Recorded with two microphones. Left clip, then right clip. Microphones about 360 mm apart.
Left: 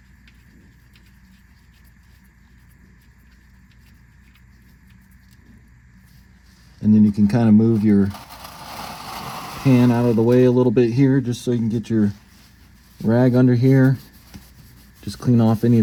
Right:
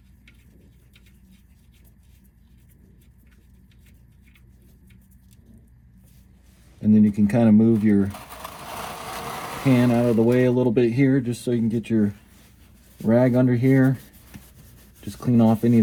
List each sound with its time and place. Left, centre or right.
6.8 s speech: centre
9.7 s speech: centre
15.0 s speech: left